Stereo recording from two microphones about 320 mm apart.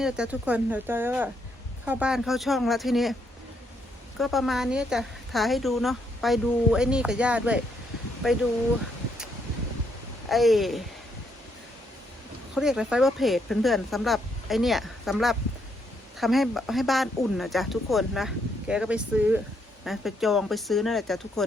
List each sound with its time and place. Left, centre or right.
0.0 s a woman's voice: centre
4.2 s a woman's voice: centre
10.2 s a woman's voice: centre
12.5 s a woman's voice: centre